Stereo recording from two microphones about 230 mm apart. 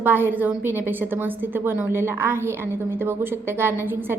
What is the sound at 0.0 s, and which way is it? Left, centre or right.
A woman's voice, centre.